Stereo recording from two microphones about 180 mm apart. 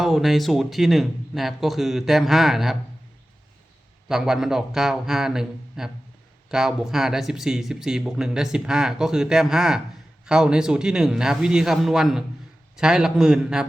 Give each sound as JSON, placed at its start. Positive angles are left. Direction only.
{"t": 0.0, "sound": "speech", "side_deg": 0}
{"t": 4.1, "sound": "speech", "side_deg": 0}